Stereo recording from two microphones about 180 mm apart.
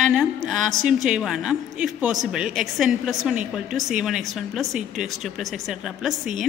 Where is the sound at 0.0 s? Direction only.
Centre (ahead or behind).